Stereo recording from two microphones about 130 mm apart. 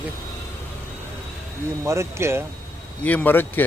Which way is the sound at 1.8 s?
20° right (ahead or behind).